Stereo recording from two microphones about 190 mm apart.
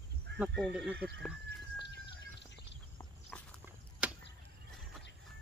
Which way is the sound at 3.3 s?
5° left (ahead or behind).